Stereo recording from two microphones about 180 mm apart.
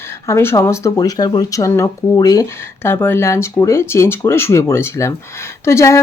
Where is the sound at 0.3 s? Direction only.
15° left (ahead or behind).